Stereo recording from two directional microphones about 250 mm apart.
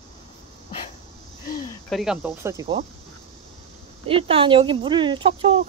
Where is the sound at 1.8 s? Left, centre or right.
Centre.